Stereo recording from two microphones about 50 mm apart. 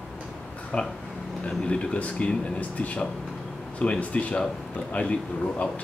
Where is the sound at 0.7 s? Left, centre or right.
Left.